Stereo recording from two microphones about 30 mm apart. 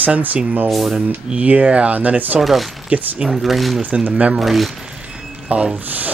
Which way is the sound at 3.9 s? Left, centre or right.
Right.